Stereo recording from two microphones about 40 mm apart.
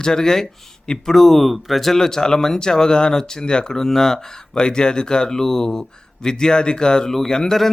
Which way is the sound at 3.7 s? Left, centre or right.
Centre.